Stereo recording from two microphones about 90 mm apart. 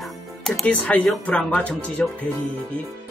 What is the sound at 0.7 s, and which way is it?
Speech, 15° left (ahead or behind).